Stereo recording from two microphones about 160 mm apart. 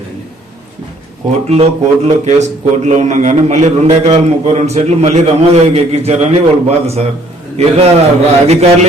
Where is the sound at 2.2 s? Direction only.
45° right (ahead or behind).